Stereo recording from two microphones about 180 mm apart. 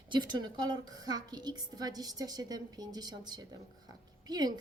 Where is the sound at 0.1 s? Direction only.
25° right (ahead or behind).